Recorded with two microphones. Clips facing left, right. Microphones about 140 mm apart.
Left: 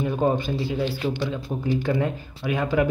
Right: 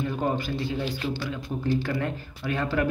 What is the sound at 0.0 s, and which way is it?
Speech, 20° left (ahead or behind).